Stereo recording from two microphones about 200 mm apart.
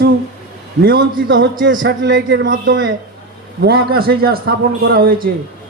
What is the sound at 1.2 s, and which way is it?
Speech, 70° right (ahead or behind).